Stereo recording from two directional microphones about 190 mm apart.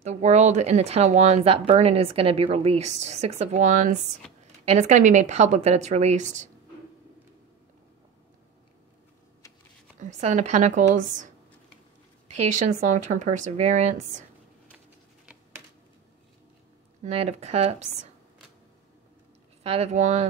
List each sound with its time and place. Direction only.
0.0 s speech: 35° right (ahead or behind)
9.9 s speech: 40° right (ahead or behind)
12.3 s speech: 40° right (ahead or behind)
17.0 s speech: 35° right (ahead or behind)
19.6 s speech: 35° right (ahead or behind)